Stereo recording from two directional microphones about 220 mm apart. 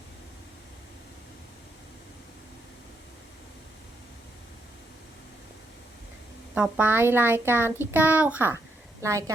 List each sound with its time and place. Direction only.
6.5 s a child's voice: 5° right (ahead or behind)